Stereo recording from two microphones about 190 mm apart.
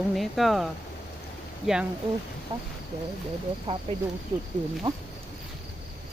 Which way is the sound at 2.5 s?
30° right (ahead or behind).